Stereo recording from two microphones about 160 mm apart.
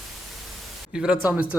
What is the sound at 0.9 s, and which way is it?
Speech, 5° right (ahead or behind).